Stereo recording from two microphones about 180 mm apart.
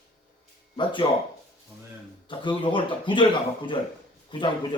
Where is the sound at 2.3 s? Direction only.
25° left (ahead or behind).